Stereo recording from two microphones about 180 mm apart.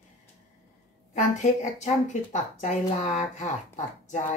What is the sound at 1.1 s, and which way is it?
Speech, 40° left (ahead or behind).